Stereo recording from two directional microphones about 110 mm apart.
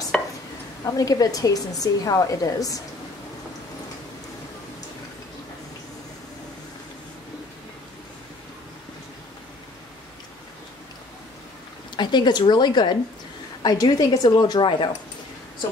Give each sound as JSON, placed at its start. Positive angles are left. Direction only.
{"t": 0.1, "sound": "chopping", "side_deg": 5}
{"t": 0.8, "sound": "a woman's voice", "side_deg": 35}
{"t": 12.0, "sound": "a woman's voice", "side_deg": 40}